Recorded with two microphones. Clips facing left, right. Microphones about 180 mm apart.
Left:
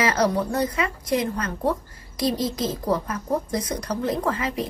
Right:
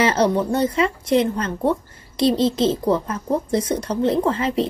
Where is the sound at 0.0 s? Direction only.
25° right (ahead or behind).